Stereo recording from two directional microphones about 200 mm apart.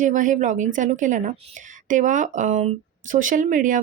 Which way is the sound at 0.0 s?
40° right (ahead or behind).